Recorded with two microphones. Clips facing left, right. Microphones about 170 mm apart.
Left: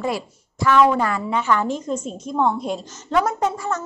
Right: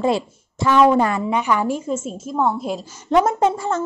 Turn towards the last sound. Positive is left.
turn(degrees=-30)  # may be behind; listen again after turning